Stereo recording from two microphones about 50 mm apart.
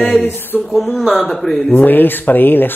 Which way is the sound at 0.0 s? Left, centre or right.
Left.